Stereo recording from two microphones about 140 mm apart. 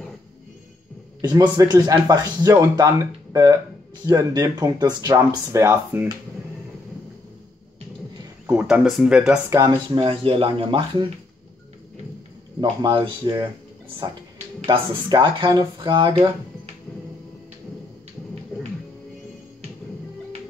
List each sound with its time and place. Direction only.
1.2 s speech: 30° right (ahead or behind)
4.0 s speech: 25° right (ahead or behind)
8.5 s speech: 10° right (ahead or behind)
9.5 s speech: 25° right (ahead or behind)
10.0 s speech: 40° right (ahead or behind)
12.5 s speech: 35° right (ahead or behind)